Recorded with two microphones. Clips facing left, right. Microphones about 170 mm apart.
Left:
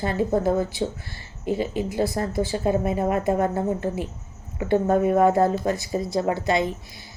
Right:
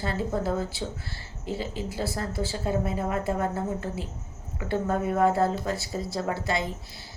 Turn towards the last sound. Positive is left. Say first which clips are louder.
# left 6 dB
turn(degrees=20)  # may be behind; listen again after turning